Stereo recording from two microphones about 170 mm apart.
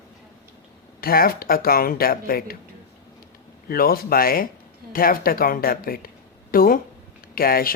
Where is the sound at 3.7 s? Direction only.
60° left (ahead or behind).